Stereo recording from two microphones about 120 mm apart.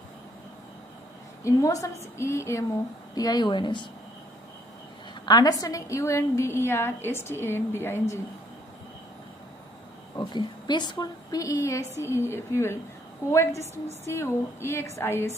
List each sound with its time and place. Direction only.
1.4 s a woman's voice: 25° left (ahead or behind)
5.2 s a woman's voice: 35° left (ahead or behind)
10.1 s a woman's voice: 35° left (ahead or behind); by 15.3 s 20° left (ahead or behind)